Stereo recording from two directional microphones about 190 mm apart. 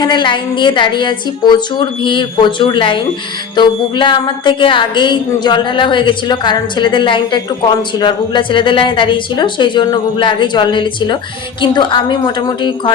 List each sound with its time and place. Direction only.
0.0 s a woman's voice: 25° left (ahead or behind)